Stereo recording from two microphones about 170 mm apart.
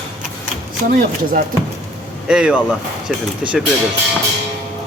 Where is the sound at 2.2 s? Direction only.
5° right (ahead or behind).